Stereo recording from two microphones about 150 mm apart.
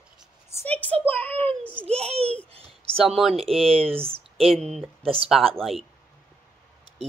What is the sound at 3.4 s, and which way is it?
Speech, 40° right (ahead or behind).